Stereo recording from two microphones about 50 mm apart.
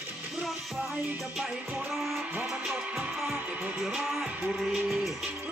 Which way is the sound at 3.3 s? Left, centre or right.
Right.